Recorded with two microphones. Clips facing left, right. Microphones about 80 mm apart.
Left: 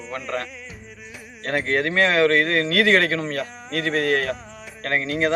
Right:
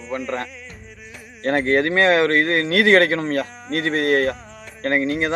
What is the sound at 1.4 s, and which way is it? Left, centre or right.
Speech, right.